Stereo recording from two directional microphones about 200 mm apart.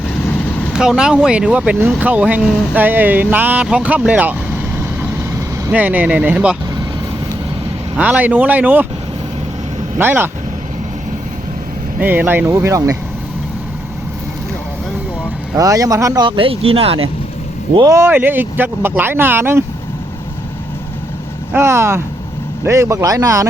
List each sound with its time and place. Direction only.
0.7 s speech: 5° right (ahead or behind)
5.6 s speech: 10° right (ahead or behind)
7.9 s speech: 5° right (ahead or behind)
10.0 s speech: 10° right (ahead or behind)
11.9 s speech: 10° right (ahead or behind)
15.5 s speech: 15° right (ahead or behind)
17.7 s speech: 15° right (ahead or behind)
21.5 s speech: 15° right (ahead or behind)